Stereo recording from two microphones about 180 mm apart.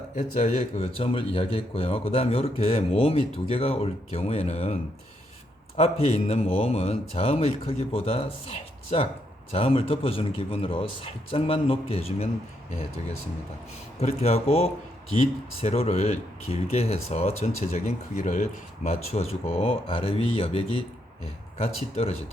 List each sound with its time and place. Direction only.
0.2 s speech: 40° left (ahead or behind)
14.0 s speech: 35° left (ahead or behind)